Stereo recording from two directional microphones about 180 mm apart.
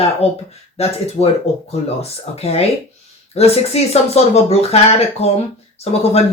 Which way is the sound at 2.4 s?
35° left (ahead or behind).